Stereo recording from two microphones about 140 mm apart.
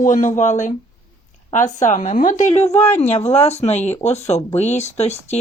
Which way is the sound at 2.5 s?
50° left (ahead or behind).